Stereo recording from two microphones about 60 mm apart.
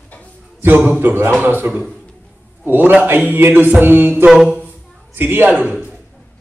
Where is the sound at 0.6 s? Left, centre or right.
Right.